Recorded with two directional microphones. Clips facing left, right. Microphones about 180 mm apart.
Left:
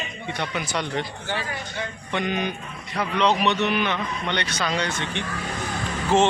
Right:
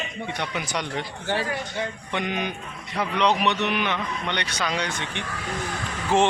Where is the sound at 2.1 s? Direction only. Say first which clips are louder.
Left 3 dB; 15° right (ahead or behind).